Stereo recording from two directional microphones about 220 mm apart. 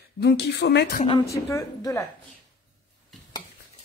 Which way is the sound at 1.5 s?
15° left (ahead or behind).